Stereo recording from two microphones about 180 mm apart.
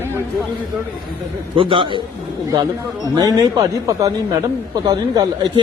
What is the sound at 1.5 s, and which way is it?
Speech, 30° right (ahead or behind).